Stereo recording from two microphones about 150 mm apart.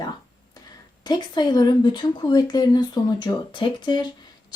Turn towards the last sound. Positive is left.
turn(degrees=30)  # may be behind; listen again after turning